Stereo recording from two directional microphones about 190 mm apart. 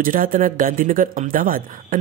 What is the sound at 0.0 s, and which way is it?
Speech, 45° right (ahead or behind).